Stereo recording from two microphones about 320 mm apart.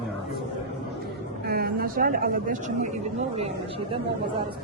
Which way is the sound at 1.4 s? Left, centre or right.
Right.